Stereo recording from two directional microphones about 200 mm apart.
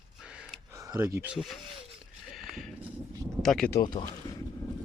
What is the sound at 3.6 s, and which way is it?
Speech, 20° left (ahead or behind).